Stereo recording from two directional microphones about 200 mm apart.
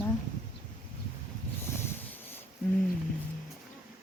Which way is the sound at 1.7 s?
10° left (ahead or behind).